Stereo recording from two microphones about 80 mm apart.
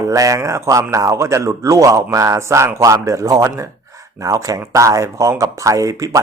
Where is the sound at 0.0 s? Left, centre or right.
Right.